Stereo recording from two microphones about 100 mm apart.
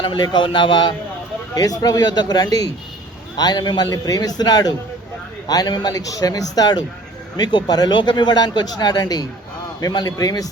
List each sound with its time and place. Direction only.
0.0 s speech: 50° left (ahead or behind)
1.5 s a man's voice: 40° left (ahead or behind)